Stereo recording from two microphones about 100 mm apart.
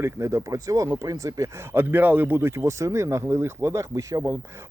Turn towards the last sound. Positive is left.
turn(degrees=-35)  # may be behind; listen again after turning